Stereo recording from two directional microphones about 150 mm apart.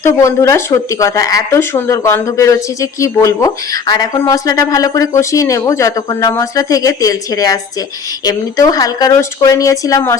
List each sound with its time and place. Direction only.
0.0 s speech: 20° left (ahead or behind)